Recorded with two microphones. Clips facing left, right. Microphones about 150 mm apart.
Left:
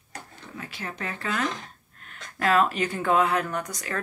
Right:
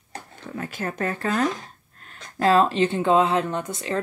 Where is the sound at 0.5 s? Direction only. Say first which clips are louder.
Right 7 dB; 50° right (ahead or behind).